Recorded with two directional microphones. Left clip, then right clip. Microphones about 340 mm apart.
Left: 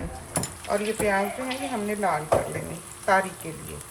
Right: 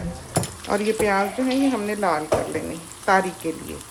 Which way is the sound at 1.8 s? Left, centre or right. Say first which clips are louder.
Right 3 dB; right.